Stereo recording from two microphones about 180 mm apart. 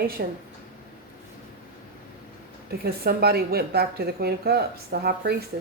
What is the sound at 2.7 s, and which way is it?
A woman's voice, 60° right (ahead or behind).